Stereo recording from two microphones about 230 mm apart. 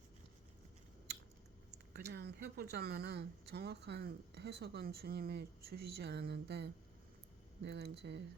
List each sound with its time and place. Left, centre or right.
1.1 s chewing: right
1.9 s speech: right